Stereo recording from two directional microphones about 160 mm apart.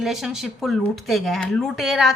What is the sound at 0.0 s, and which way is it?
Speech, centre (ahead or behind).